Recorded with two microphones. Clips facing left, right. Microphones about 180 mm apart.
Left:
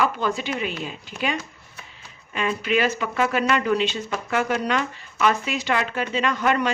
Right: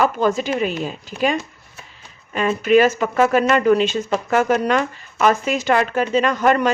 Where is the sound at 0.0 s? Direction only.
45° right (ahead or behind).